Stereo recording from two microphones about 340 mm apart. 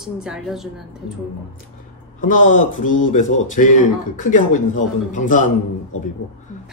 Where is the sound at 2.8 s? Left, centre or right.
Left.